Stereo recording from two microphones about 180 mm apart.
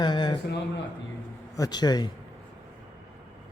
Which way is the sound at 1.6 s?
20° left (ahead or behind).